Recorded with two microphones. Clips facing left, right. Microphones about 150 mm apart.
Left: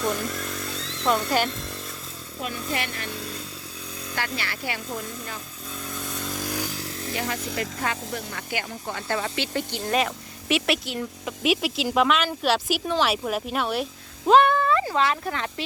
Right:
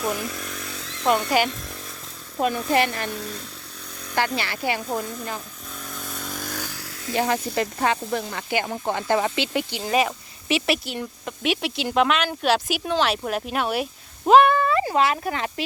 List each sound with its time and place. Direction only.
0.0 s chainsaw: 5° right (ahead or behind)
1.3 s speech: 5° right (ahead or behind)
2.4 s speech: 40° right (ahead or behind)
4.2 s speech: 25° right (ahead or behind)
5.8 s motorcycle: centre (ahead or behind); by 6.9 s 20° left (ahead or behind)
7.5 s speech: 25° right (ahead or behind); by 15.6 s 10° right (ahead or behind)